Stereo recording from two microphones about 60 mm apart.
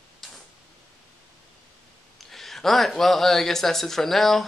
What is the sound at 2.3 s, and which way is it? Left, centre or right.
Speech, centre.